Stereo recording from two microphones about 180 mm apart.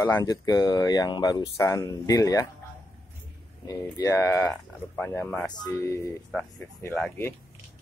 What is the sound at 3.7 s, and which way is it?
Speech, 15° left (ahead or behind).